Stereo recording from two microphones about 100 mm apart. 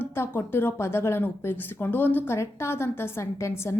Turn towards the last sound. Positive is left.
turn(degrees=30)  # may be behind; listen again after turning